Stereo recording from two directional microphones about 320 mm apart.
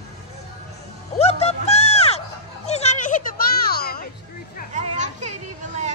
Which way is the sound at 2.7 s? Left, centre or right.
Left.